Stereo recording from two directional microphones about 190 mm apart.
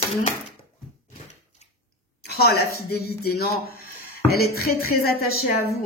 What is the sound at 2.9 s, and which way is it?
A woman's voice, 55° left (ahead or behind).